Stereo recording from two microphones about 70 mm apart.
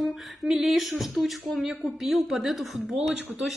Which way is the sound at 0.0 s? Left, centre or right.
Centre.